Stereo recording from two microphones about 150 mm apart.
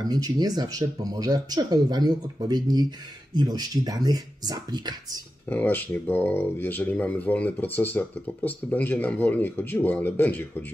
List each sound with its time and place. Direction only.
0.0 s speech: 25° right (ahead or behind)
5.5 s speech: 10° left (ahead or behind)